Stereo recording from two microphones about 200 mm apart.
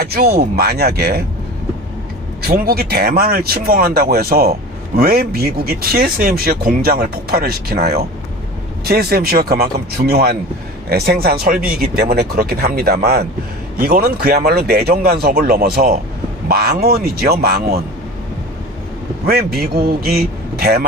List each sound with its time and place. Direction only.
0.0 s speech: 50° right (ahead or behind)
2.4 s speech: 50° right (ahead or behind)
19.2 s speech: 50° right (ahead or behind)